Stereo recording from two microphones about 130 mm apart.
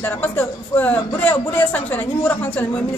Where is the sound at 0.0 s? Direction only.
15° left (ahead or behind).